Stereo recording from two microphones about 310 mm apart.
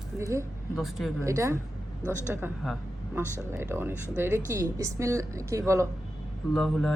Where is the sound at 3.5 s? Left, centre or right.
Centre.